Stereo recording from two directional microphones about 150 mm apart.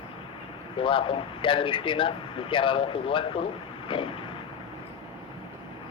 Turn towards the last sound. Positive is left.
turn(degrees=35)  # may be behind; listen again after turning